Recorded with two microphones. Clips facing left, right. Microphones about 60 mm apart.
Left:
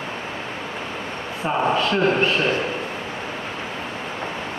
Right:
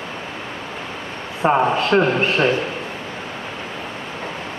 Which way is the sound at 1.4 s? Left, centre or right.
Right.